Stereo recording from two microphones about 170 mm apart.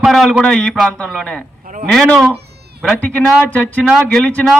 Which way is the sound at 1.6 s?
50° right (ahead or behind).